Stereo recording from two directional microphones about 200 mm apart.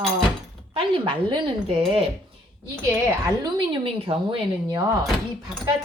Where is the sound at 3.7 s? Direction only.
25° right (ahead or behind).